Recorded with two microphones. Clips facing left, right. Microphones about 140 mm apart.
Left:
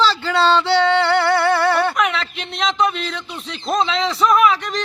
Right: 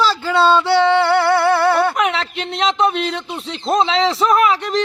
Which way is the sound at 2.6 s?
30° right (ahead or behind).